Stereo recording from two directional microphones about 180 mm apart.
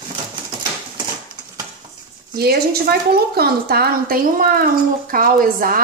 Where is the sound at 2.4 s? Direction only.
60° right (ahead or behind).